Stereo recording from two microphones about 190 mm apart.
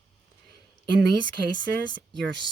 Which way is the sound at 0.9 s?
60° right (ahead or behind).